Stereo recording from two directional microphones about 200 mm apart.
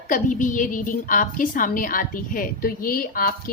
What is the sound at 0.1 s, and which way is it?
A woman's voice, 40° left (ahead or behind).